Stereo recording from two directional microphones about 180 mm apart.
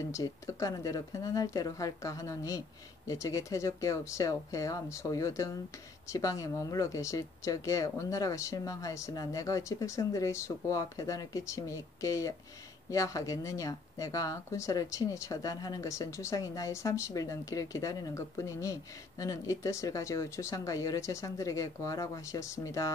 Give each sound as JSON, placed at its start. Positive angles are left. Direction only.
{"t": 0.1, "sound": "speech", "side_deg": 20}